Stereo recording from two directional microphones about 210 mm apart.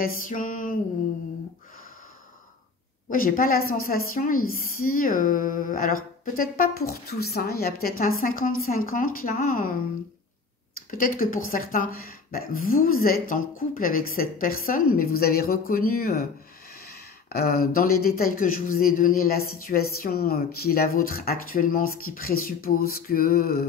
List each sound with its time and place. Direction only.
0.0 s speech: 40° left (ahead or behind)
3.1 s speech: 40° left (ahead or behind)
10.9 s speech: 40° left (ahead or behind)
17.3 s speech: 45° left (ahead or behind)